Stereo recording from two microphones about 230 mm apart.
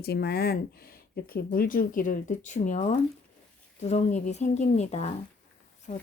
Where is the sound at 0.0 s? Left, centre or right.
Left.